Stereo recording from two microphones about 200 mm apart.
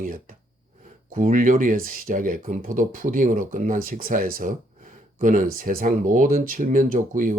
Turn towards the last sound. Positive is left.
turn(degrees=-40)  # may be behind; listen again after turning